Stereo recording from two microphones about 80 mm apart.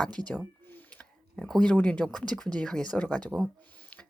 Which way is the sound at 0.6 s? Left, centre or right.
Left.